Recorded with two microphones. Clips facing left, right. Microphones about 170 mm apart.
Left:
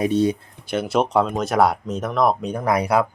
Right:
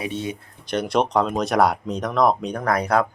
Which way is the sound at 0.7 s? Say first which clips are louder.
Left 1 dB; 5° left (ahead or behind).